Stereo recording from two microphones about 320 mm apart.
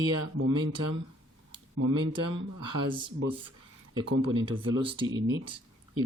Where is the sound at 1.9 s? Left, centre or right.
Centre.